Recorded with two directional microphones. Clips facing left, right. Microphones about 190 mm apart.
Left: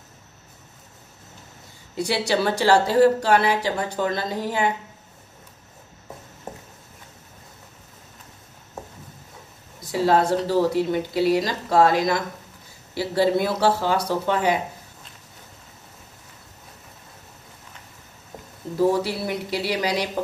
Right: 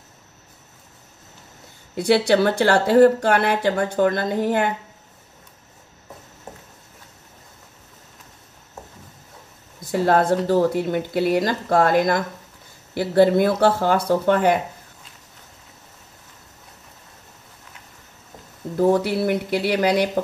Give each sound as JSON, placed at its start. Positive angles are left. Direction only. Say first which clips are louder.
{"t": 2.0, "sound": "speech", "louder": "right 6 dB", "side_deg": -55}
{"t": 9.8, "sound": "speech", "louder": "right 2 dB", "side_deg": -55}
{"t": 18.9, "sound": "speech", "louder": "right 7 dB", "side_deg": -55}